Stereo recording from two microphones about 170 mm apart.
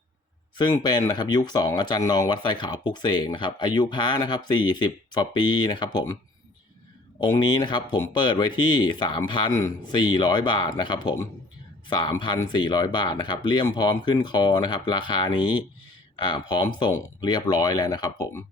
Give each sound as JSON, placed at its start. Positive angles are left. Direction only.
{"t": 0.5, "sound": "speech", "side_deg": 25}
{"t": 7.2, "sound": "speech", "side_deg": 25}